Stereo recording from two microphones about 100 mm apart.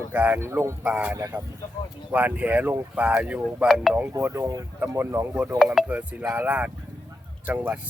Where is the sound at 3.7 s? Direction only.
Centre (ahead or behind).